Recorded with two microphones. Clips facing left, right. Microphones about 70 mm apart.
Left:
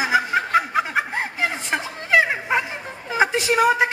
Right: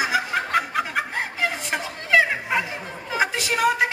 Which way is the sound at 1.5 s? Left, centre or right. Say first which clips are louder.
Left 2 dB; left.